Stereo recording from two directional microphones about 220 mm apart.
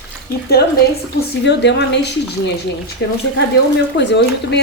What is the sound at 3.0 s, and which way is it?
A woman's voice, 50° left (ahead or behind).